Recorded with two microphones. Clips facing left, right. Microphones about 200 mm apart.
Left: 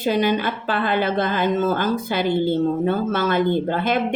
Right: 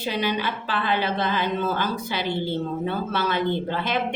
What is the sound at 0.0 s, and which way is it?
A woman's voice, 50° left (ahead or behind).